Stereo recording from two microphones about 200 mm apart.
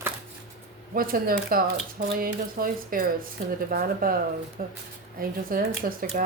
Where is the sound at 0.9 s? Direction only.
45° right (ahead or behind).